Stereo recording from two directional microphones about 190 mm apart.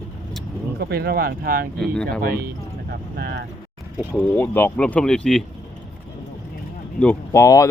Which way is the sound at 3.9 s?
Centre (ahead or behind).